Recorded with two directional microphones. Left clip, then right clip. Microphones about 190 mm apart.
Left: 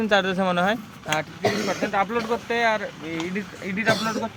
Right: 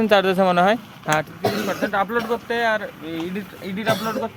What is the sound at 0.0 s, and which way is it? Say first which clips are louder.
Speech: right 5 dB; 25° right (ahead or behind).